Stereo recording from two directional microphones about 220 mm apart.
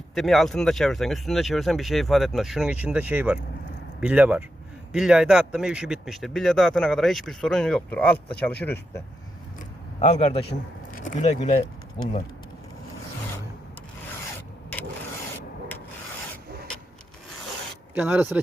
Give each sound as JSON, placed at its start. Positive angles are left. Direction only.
{"t": 0.1, "sound": "speech", "side_deg": 0}
{"t": 9.6, "sound": "a sound", "side_deg": 30}
{"t": 10.9, "sound": "speech", "side_deg": 35}
{"t": 17.9, "sound": "speech", "side_deg": -5}